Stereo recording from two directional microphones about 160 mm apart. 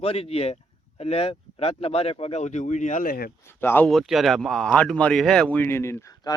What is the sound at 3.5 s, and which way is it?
Speech, 15° left (ahead or behind).